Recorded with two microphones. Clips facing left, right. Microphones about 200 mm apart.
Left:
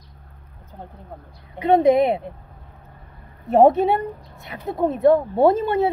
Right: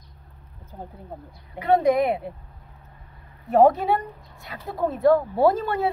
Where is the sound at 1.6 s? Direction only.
20° left (ahead or behind).